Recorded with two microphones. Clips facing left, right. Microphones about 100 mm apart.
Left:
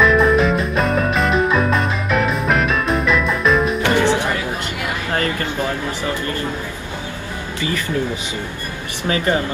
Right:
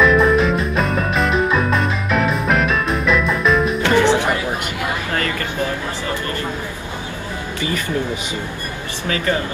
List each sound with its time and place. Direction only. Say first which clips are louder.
0.0 s music: even; centre (ahead or behind)
4.0 s music: right 1 dB; 20° right (ahead or behind)
9.1 s speech: left 2 dB; 25° left (ahead or behind)